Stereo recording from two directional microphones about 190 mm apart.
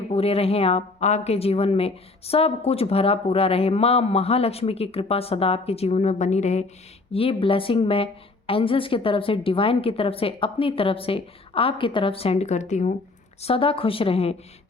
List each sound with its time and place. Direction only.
0.1 s a woman's voice: 30° left (ahead or behind)